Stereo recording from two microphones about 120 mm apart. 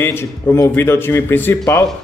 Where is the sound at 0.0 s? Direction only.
20° left (ahead or behind).